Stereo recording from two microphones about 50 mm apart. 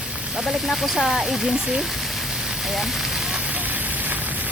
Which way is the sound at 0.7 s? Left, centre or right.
Centre.